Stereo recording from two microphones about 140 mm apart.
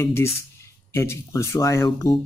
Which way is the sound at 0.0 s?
20° left (ahead or behind).